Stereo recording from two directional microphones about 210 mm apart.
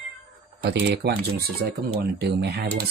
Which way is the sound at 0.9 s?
50° right (ahead or behind).